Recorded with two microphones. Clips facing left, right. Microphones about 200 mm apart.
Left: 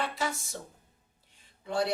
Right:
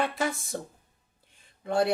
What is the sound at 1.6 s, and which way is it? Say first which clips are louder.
Speech: right 4 dB; 55° right (ahead or behind).